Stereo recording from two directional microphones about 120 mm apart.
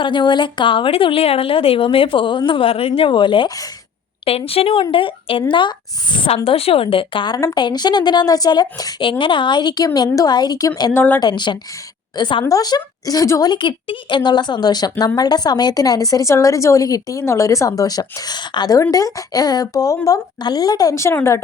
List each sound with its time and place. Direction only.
0.0 s a woman's voice: 40° left (ahead or behind)
10.9 s a woman's voice: 15° left (ahead or behind)
11.2 s a woman's voice: 40° left (ahead or behind)
13.5 s a woman's voice: 40° left (ahead or behind); by 21.2 s 25° left (ahead or behind)